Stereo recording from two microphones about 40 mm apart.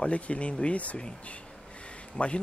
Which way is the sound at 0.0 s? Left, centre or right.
Left.